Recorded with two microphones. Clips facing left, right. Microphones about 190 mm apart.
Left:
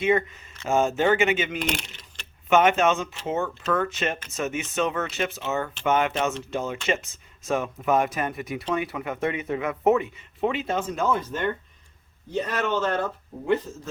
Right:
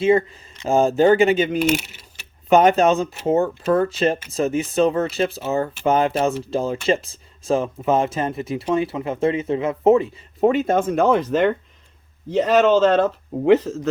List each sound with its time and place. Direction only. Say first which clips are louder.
0.0 s speech: right 6 dB; 30° right (ahead or behind)
1.5 s speech: right 9 dB; 5° right (ahead or behind)
2.5 s speech: right 5 dB; 35° right (ahead or behind); by 13.8 s 85° right